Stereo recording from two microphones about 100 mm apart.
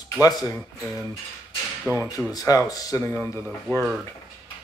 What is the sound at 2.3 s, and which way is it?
Speech, 35° left (ahead or behind).